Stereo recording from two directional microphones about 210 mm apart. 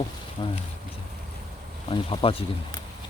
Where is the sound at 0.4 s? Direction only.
20° left (ahead or behind).